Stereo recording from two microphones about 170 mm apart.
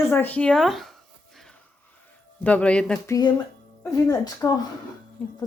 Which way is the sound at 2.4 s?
10° left (ahead or behind).